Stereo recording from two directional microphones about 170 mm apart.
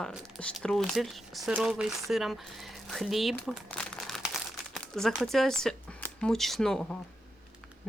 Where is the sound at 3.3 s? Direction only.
5° left (ahead or behind).